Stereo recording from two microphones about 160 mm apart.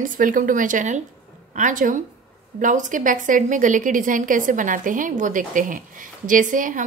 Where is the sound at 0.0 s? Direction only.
55° right (ahead or behind).